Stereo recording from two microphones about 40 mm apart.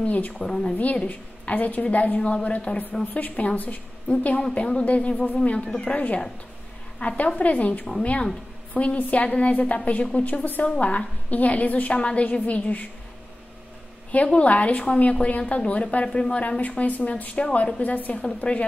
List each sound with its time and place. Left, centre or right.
0.0 s a woman's voice: left
0.4 s a woman's voice: centre
0.7 s a woman's voice: left
4.6 s speech: left
4.8 s a woman's voice: left
14.1 s a woman's voice: left
16.1 s speech: left
16.3 s a woman's voice: left
17.9 s a woman's voice: left
18.2 s a woman's voice: left